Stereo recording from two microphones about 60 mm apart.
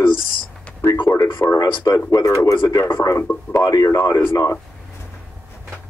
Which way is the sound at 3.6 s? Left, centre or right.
Left.